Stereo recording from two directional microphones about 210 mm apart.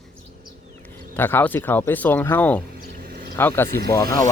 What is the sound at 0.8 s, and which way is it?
Speech, 10° left (ahead or behind).